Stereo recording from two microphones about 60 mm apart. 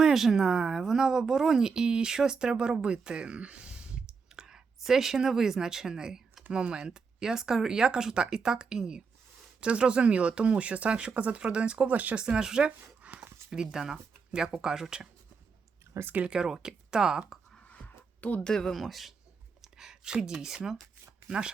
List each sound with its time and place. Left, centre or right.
0.0 s speech: centre; by 12.2 s right
12.2 s speech: centre
16.0 s speech: right
16.2 s speech: centre
17.7 s a sound: left
18.2 s speech: left
18.4 s speech: centre